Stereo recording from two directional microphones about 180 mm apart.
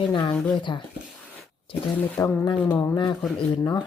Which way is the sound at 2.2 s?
20° left (ahead or behind).